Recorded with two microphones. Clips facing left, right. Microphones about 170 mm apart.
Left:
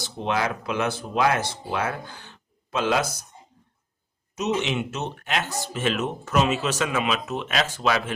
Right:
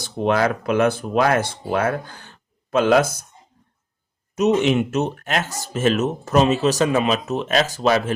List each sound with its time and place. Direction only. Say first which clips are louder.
0.0 s speech: right 7 dB; 50° right (ahead or behind)
4.4 s speech: right 8 dB; 50° right (ahead or behind)